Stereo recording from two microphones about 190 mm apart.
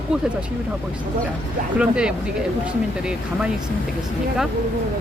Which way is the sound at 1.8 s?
5° right (ahead or behind).